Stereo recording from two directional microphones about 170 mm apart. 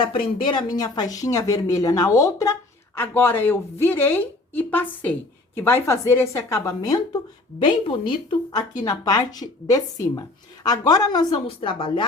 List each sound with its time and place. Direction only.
0.0 s a woman's voice: 30° left (ahead or behind)